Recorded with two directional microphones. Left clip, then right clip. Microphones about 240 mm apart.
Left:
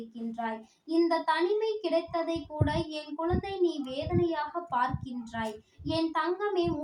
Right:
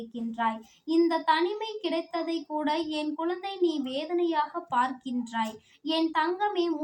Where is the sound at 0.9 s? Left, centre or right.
Right.